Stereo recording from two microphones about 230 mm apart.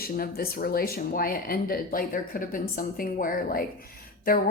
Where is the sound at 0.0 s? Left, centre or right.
Left.